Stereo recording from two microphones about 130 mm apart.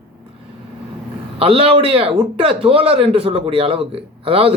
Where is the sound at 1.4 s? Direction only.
45° right (ahead or behind).